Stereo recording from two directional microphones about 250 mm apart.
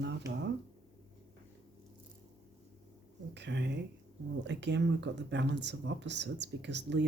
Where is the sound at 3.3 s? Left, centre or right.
Right.